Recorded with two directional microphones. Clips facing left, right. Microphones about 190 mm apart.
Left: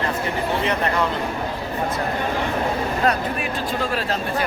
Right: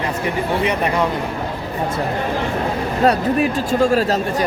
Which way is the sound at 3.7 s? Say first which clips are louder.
Right 8 dB; 45° right (ahead or behind).